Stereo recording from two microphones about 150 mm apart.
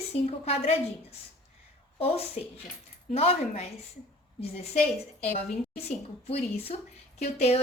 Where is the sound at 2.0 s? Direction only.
40° left (ahead or behind).